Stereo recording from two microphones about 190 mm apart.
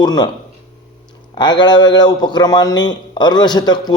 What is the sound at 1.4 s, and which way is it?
A man's voice, 25° left (ahead or behind).